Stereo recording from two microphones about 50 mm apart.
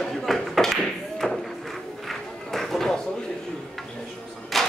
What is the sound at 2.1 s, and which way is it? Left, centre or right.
Run, centre.